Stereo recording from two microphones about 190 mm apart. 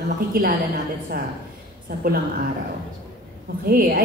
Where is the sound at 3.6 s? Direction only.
50° right (ahead or behind).